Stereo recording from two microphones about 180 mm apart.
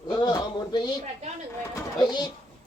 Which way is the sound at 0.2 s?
20° left (ahead or behind).